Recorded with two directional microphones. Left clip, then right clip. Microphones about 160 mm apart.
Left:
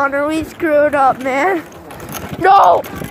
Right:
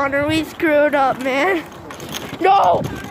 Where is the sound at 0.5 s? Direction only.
10° right (ahead or behind).